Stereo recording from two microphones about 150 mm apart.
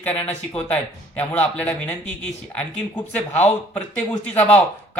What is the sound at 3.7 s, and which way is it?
Speech, 10° left (ahead or behind).